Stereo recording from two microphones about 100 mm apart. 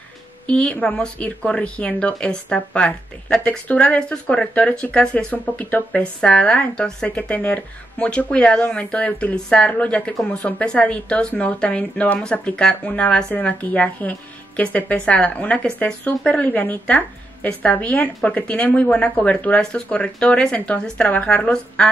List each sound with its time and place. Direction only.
0.5 s speech: 15° left (ahead or behind)